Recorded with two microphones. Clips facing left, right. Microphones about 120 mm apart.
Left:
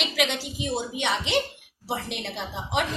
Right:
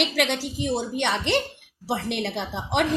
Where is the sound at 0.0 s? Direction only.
60° right (ahead or behind).